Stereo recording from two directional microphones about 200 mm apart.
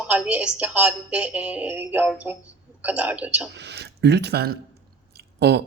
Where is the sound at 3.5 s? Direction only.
55° right (ahead or behind).